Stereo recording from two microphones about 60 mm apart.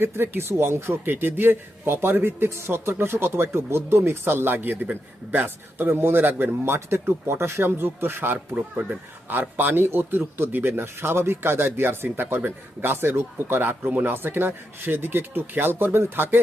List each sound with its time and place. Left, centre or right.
0.0 s a man's voice: right
6.7 s a man's voice: right
8.5 s speech: right
9.3 s a man's voice: right